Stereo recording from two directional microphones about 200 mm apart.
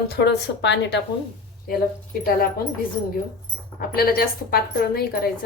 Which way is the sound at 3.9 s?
50° left (ahead or behind).